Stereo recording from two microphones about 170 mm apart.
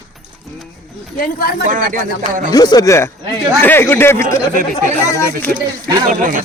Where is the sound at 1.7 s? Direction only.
55° right (ahead or behind).